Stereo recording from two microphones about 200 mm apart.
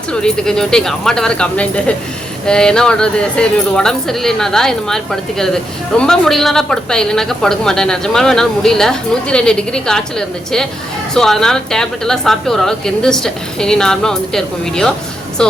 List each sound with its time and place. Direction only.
0.1 s a woman's voice: 5° left (ahead or behind)